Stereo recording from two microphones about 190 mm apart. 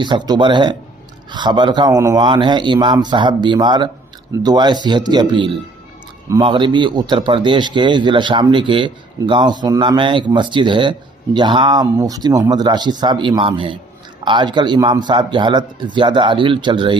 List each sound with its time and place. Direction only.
0.0 s a man's voice: 25° right (ahead or behind)